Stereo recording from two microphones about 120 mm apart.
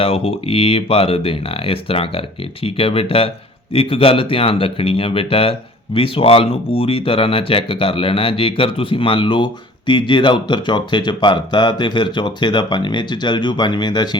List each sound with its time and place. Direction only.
0.0 s speech: 50° left (ahead or behind)